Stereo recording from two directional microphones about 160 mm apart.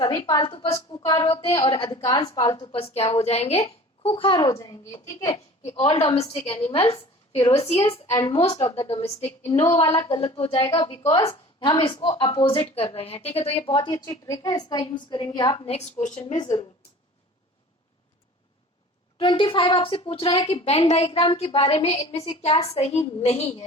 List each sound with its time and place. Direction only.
0.0 s a woman's voice: 30° left (ahead or behind)
2.7 s a woman's voice: 40° left (ahead or behind)
8.1 s a woman's voice: 20° left (ahead or behind)
8.6 s a woman's voice: 40° left (ahead or behind)
14.0 s a woman's voice: 20° left (ahead or behind)
15.7 s a woman's voice: 50° left (ahead or behind)
16.2 s a woman's voice: 30° left (ahead or behind)
19.2 s a woman's voice: 30° left (ahead or behind)